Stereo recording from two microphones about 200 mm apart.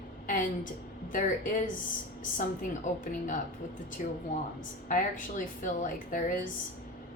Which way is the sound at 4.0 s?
40° left (ahead or behind).